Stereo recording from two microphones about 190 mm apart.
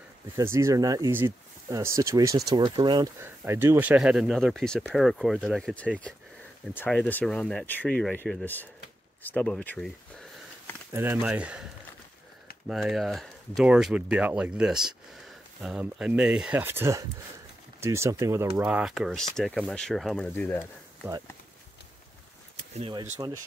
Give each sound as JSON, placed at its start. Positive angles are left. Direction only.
{"t": 0.4, "sound": "speech", "side_deg": -15}
{"t": 10.9, "sound": "speech", "side_deg": -10}
{"t": 12.6, "sound": "speech", "side_deg": 0}
{"t": 22.8, "sound": "speech", "side_deg": -30}
{"t": 23.1, "sound": "speech", "side_deg": -15}